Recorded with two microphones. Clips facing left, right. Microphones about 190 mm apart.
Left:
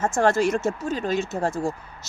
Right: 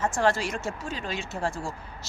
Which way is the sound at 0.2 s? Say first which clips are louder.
Left 8 dB; 45° left (ahead or behind).